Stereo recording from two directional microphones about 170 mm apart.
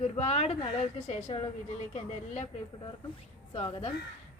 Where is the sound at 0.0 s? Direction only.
40° left (ahead or behind).